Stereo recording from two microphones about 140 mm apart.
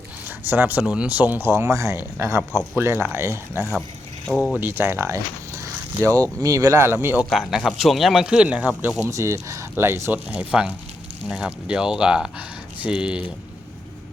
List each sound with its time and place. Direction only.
0.3 s speech: 15° right (ahead or behind)
3.6 s speech: centre (ahead or behind)
4.6 s speech: 15° right (ahead or behind)
6.4 s speech: 25° right (ahead or behind)
7.3 s speech: centre (ahead or behind)
9.0 s speech: 20° right (ahead or behind)